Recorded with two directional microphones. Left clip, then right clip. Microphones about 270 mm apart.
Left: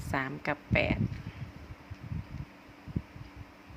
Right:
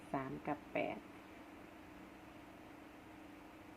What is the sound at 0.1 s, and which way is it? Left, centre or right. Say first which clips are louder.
Speech: left 9 dB; left.